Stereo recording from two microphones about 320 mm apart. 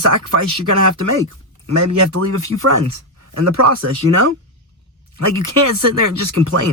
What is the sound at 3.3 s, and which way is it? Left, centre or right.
Speech, right.